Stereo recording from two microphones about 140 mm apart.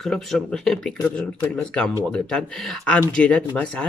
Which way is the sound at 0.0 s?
Centre (ahead or behind).